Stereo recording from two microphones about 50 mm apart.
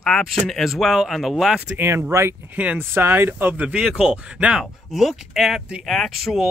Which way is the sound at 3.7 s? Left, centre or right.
Centre.